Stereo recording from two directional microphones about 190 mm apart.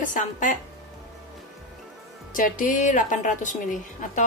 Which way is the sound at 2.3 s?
45° left (ahead or behind).